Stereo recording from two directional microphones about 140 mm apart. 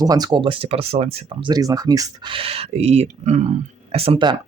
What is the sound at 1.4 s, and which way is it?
Speech, 25° right (ahead or behind).